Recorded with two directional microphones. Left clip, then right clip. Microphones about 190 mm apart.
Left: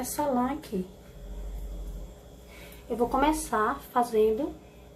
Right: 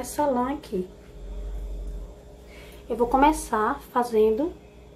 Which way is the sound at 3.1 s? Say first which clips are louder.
Right 6 dB; 15° right (ahead or behind).